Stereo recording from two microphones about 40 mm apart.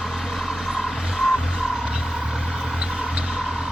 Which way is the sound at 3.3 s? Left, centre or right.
Centre.